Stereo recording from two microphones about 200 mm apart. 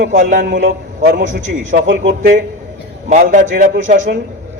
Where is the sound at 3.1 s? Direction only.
40° right (ahead or behind).